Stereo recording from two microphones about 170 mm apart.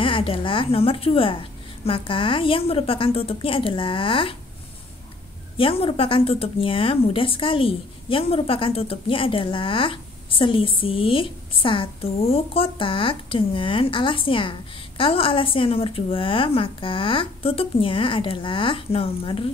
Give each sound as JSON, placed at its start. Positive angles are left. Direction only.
{"t": 0.0, "sound": "speech", "side_deg": 30}
{"t": 5.6, "sound": "speech", "side_deg": 35}